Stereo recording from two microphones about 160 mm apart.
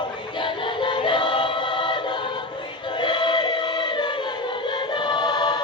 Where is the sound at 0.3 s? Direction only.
30° left (ahead or behind).